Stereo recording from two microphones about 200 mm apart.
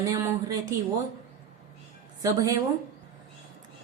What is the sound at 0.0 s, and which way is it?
Speech, 15° right (ahead or behind).